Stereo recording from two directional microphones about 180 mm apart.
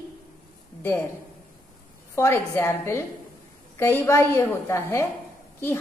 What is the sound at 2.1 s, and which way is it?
A woman's voice, 15° left (ahead or behind).